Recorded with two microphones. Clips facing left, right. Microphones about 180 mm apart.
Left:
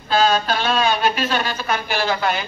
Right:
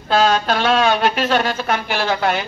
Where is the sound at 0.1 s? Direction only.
80° right.